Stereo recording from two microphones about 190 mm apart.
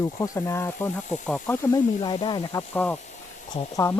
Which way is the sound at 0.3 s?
15° left (ahead or behind).